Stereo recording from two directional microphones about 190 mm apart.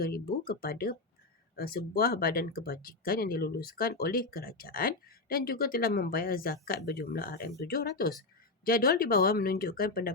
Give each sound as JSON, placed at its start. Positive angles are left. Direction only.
{"t": 0.0, "sound": "speech", "side_deg": 50}